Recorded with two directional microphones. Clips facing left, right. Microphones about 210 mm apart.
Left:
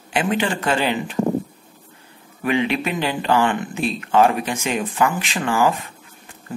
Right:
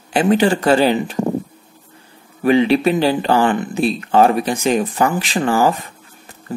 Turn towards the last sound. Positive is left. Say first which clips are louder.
# right 4 dB
turn(degrees=-35)  # may be behind; listen again after turning